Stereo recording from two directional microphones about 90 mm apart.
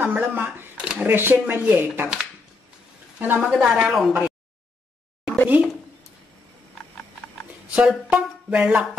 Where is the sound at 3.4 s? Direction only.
5° right (ahead or behind).